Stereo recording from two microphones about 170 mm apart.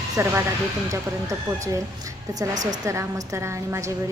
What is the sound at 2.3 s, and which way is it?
Speech, 20° right (ahead or behind).